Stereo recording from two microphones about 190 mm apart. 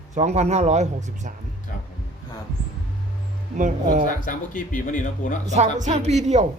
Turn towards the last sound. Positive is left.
turn(degrees=-35)  # may be behind; listen again after turning